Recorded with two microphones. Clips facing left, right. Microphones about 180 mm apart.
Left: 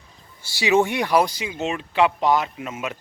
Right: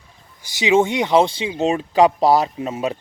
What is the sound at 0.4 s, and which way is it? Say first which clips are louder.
Speech: right 3 dB; 20° right (ahead or behind).